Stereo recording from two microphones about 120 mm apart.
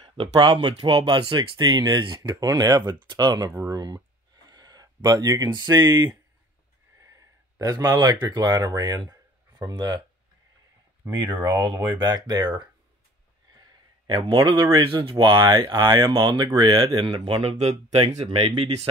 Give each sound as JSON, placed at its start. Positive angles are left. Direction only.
{"t": 0.0, "sound": "speech", "side_deg": -45}
{"t": 7.0, "sound": "speech", "side_deg": -25}
{"t": 11.1, "sound": "speech", "side_deg": -35}
{"t": 13.6, "sound": "a sound", "side_deg": -40}
{"t": 15.0, "sound": "speech", "side_deg": -40}
{"t": 17.4, "sound": "speech", "side_deg": -60}